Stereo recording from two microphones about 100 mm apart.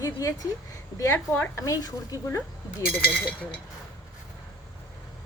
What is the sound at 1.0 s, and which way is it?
A woman's voice, 25° left (ahead or behind).